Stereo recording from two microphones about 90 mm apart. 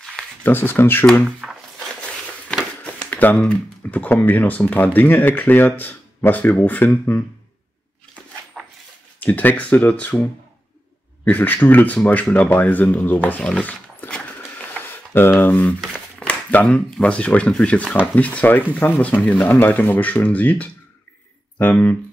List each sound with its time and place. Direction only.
0.4 s speech: 20° left (ahead or behind)
1.2 s speech: centre (ahead or behind)
2.8 s speech: 20° left (ahead or behind)
8.6 s dog: 5° left (ahead or behind)
9.2 s speech: 20° left (ahead or behind)
13.4 s roaring cats: 15° left (ahead or behind)
15.1 s speech: 25° left (ahead or behind)
16.2 s a sound: 15° left (ahead or behind)
16.6 s speech: 10° left (ahead or behind)